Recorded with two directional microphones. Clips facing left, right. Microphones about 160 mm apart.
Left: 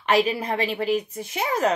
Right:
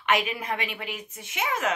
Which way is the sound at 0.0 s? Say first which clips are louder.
Left 5 dB; 35° left (ahead or behind).